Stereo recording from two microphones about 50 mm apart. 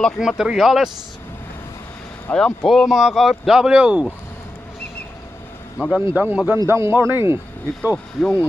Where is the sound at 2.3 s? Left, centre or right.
Centre.